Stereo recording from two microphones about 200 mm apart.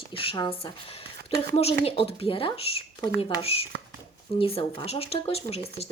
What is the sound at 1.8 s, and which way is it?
Speech, 30° left (ahead or behind).